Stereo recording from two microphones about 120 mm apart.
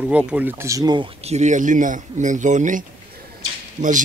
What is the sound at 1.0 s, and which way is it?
Speech, 60° right (ahead or behind).